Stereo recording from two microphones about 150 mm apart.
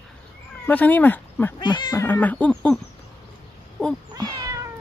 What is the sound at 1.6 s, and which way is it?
Speech, 30° left (ahead or behind).